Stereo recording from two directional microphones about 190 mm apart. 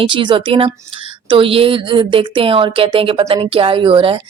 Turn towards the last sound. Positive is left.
turn(degrees=-30)  # may be behind; listen again after turning